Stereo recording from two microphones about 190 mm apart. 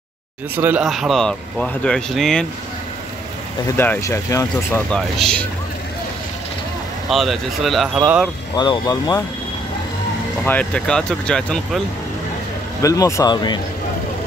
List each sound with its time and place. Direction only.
0.6 s speech: 5° right (ahead or behind)
3.6 s speech: 10° left (ahead or behind)
4.9 s speech: 5° left (ahead or behind)
7.1 s speech: centre (ahead or behind)
8.5 s speech: 25° left (ahead or behind)
10.4 s speech: 10° left (ahead or behind)
12.8 s speech: 15° left (ahead or behind)